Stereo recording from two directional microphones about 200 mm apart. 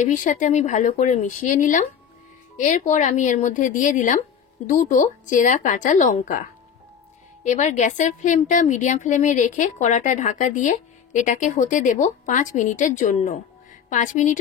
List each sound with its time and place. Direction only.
0.0 s a woman's voice: 40° left (ahead or behind)
7.4 s a woman's voice: 35° left (ahead or behind)